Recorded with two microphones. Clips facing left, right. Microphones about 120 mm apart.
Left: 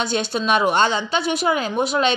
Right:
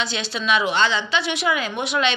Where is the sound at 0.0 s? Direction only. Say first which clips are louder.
Left 4 dB; 50° left (ahead or behind).